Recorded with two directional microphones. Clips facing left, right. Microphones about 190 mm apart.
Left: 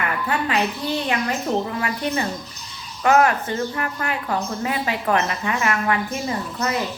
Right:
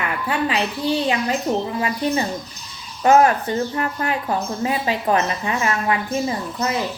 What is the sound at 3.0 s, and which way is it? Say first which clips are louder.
Speech: right 3 dB; 30° right (ahead or behind).